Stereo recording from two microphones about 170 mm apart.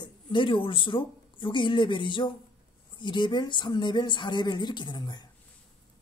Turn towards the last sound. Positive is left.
turn(degrees=25)  # may be behind; listen again after turning